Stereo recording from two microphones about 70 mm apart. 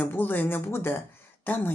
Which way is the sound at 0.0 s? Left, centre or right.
Left.